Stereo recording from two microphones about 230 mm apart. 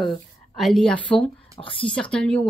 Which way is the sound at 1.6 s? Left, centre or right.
Left.